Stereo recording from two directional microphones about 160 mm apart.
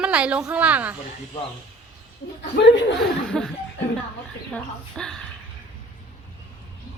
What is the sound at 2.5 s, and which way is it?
Speech, 90° left.